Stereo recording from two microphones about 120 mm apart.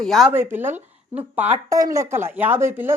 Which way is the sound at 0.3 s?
15° right (ahead or behind).